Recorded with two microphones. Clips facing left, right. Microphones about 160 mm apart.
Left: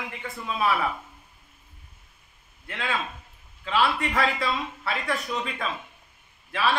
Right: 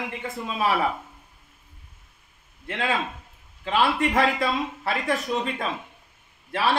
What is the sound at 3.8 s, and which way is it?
Speech, 45° right (ahead or behind).